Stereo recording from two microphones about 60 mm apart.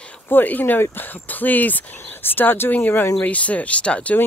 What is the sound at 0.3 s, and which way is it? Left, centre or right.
Speech, left.